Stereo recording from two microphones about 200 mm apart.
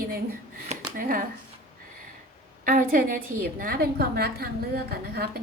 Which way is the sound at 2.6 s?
45° right (ahead or behind).